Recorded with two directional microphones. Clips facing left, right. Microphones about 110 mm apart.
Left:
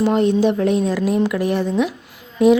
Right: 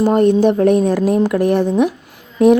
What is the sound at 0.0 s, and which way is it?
Speech, 45° right (ahead or behind).